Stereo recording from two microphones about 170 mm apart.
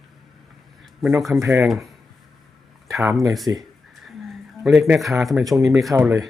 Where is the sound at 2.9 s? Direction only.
15° right (ahead or behind).